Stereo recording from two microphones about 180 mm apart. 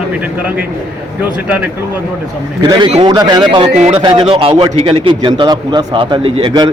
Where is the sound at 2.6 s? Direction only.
25° right (ahead or behind).